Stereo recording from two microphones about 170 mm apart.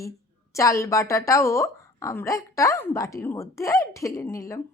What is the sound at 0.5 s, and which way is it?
A woman's voice, 15° left (ahead or behind).